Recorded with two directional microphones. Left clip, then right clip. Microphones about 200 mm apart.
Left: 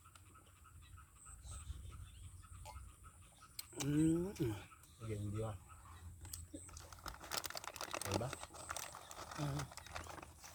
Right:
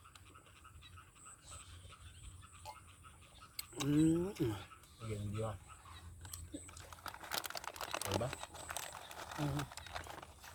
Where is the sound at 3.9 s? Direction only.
10° right (ahead or behind).